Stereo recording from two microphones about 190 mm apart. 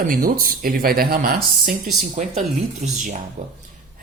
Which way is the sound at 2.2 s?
40° right (ahead or behind).